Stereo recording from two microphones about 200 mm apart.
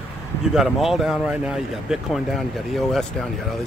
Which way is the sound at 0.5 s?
Centre (ahead or behind).